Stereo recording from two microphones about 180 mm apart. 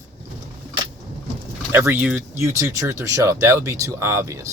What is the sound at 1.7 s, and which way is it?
Speech, 10° right (ahead or behind).